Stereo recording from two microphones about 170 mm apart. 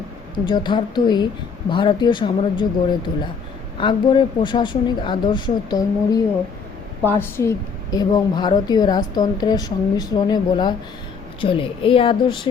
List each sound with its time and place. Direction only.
0.3 s a woman's voice: 25° left (ahead or behind)
3.8 s a woman's voice: 30° left (ahead or behind)